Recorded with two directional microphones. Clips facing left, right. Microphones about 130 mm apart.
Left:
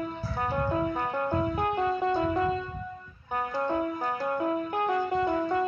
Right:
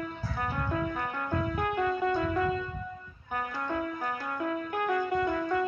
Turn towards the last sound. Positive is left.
turn(degrees=30)  # may be behind; listen again after turning